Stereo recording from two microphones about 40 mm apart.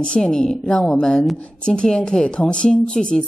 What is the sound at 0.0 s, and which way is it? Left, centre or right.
A woman's voice, left.